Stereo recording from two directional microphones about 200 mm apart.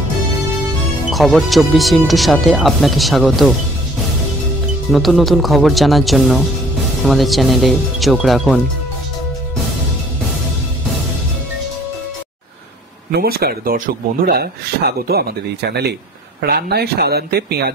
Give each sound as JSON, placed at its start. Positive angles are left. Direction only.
{"t": 1.1, "sound": "speech", "side_deg": 0}
{"t": 4.9, "sound": "speech", "side_deg": 0}
{"t": 13.1, "sound": "speech", "side_deg": -50}
{"t": 16.3, "sound": "speech", "side_deg": -55}